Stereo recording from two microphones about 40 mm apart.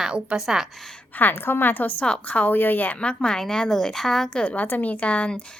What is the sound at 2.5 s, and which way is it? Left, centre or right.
Speech, left.